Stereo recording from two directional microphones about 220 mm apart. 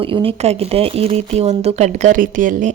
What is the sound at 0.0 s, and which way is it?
Speech, 25° right (ahead or behind).